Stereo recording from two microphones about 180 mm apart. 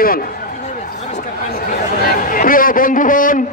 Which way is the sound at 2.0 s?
50° left (ahead or behind).